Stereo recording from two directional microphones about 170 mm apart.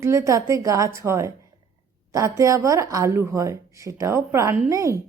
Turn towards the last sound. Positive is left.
turn(degrees=-20)  # may be behind; listen again after turning